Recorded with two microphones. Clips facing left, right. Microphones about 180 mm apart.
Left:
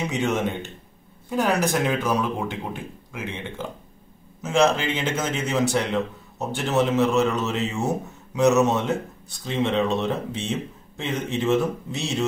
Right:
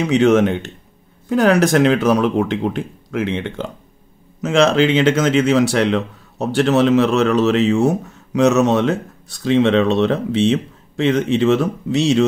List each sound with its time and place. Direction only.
0.0 s speech: 85° right